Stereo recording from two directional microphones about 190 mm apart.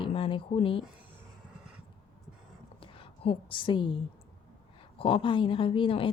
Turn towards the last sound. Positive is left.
turn(degrees=30)  # may be behind; listen again after turning